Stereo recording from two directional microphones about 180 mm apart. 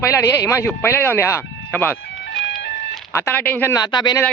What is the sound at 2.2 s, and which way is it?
Music, 70° left (ahead or behind).